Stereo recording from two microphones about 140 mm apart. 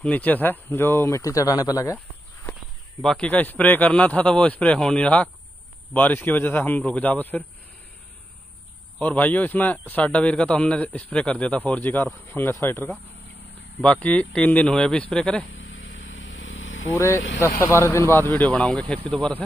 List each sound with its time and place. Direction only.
0.0 s speech: 10° left (ahead or behind)
3.0 s a man's voice: 5° left (ahead or behind)
9.0 s a man's voice: 10° left (ahead or behind)
16.9 s speech: 25° left (ahead or behind)
18.3 s a man's voice: 5° left (ahead or behind)